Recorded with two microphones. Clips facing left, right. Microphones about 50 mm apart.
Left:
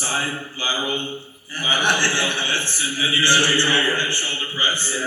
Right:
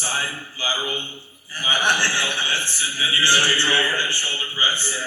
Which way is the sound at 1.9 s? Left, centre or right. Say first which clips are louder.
Even; left.